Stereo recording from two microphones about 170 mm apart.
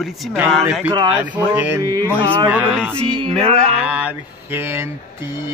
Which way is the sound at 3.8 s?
10° right (ahead or behind).